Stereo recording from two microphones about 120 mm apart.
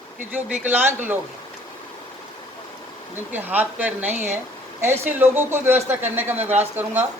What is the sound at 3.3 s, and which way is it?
A woman's voice, 15° right (ahead or behind).